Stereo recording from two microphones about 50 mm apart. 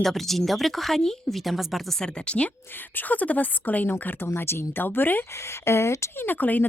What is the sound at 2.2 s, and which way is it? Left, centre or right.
Speech, left.